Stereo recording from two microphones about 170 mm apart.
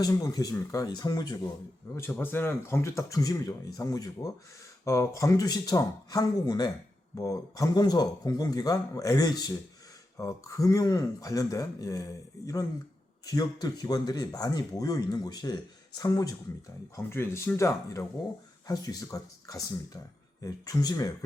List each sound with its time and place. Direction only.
0.0 s speech: 20° left (ahead or behind)
2.0 s speech: 10° left (ahead or behind)
13.2 s speech: 20° left (ahead or behind)